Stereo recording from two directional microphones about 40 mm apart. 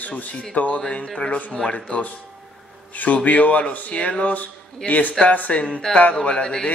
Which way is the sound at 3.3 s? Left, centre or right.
Left.